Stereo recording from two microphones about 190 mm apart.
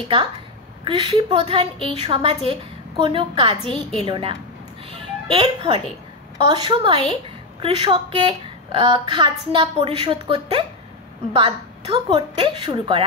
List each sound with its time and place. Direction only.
0.8 s a woman's voice: 30° right (ahead or behind)